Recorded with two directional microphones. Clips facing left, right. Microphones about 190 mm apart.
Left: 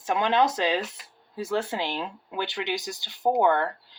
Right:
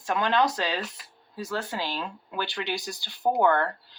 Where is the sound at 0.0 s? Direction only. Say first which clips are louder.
Left 1 dB; 20° left (ahead or behind).